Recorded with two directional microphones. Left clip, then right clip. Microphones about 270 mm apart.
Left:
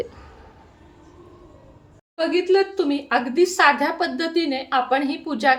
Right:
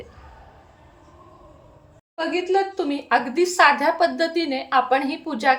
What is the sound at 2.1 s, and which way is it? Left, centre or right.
A woman's voice, centre.